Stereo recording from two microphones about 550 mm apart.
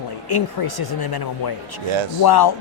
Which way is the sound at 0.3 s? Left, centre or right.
Left.